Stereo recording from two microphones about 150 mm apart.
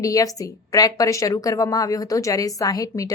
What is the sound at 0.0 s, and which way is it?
A woman's voice, 20° left (ahead or behind).